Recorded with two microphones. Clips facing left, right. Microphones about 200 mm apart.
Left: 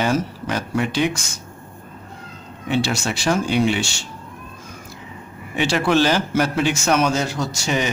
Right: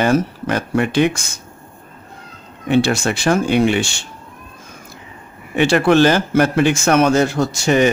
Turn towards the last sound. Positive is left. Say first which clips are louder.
# right 7 dB
turn(degrees=-55)  # may be behind; listen again after turning